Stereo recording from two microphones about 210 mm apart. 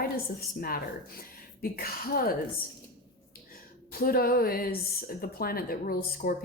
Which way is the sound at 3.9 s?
45° left (ahead or behind).